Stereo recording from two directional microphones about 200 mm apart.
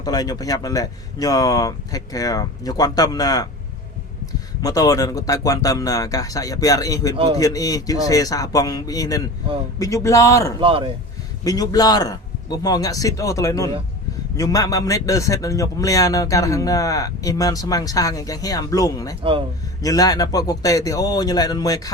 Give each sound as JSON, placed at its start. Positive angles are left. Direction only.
{"t": 0.0, "sound": "a man's voice", "side_deg": 20}
{"t": 10.6, "sound": "speech", "side_deg": -25}
{"t": 11.4, "sound": "a man's voice", "side_deg": 20}